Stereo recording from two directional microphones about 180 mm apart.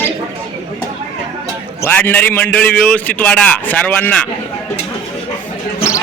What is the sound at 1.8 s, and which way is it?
A man's voice, 10° left (ahead or behind).